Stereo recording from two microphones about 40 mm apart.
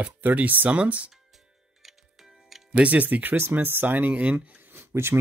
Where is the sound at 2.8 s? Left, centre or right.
Right.